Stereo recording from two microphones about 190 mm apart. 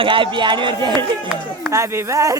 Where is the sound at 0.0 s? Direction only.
25° right (ahead or behind).